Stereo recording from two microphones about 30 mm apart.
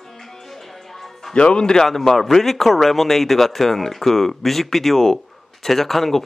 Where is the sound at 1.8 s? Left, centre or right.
Centre.